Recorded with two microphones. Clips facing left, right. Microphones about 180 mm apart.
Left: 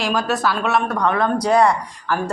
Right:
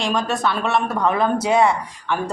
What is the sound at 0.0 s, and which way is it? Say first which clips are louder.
Speech: left 1 dB; 5° left (ahead or behind).